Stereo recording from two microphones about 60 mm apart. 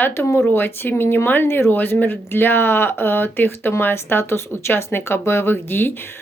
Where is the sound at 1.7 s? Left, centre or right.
Left.